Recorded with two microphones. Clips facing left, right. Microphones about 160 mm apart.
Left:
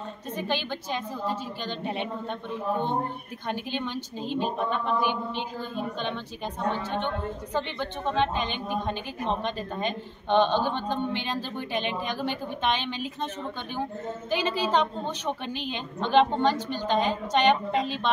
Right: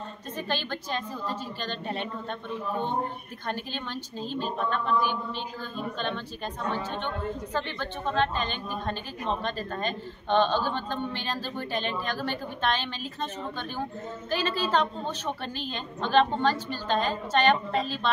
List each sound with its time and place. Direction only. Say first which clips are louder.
0.4 s a woman's voice: left 1 dB; 15° left (ahead or behind)
3.4 s a woman's voice: left 3 dB; 15° left (ahead or behind)
14.3 s a woman's voice: left 1 dB; 15° left (ahead or behind)